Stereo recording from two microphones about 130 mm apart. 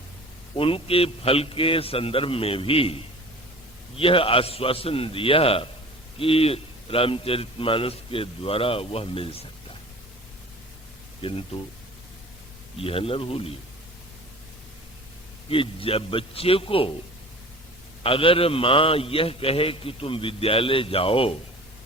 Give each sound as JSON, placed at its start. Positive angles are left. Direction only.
{"t": 0.5, "sound": "a man's voice", "side_deg": 45}
{"t": 11.2, "sound": "a man's voice", "side_deg": 45}
{"t": 12.7, "sound": "a man's voice", "side_deg": 45}
{"t": 15.4, "sound": "a man's voice", "side_deg": 45}
{"t": 18.0, "sound": "a man's voice", "side_deg": 45}